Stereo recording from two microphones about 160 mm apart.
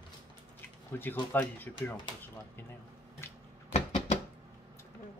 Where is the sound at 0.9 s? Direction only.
15° left (ahead or behind).